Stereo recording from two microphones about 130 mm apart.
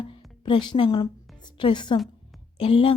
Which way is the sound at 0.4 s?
35° left (ahead or behind).